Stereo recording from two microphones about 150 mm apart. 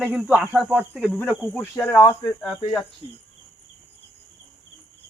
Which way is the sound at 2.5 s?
30° left (ahead or behind).